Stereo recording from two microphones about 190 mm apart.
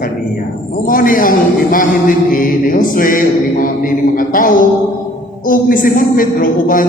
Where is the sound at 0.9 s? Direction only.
45° left (ahead or behind).